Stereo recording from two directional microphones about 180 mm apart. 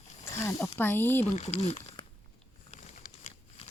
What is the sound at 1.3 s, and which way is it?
Speech, 40° left (ahead or behind).